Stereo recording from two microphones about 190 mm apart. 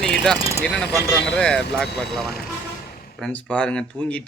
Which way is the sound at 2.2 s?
55° left (ahead or behind).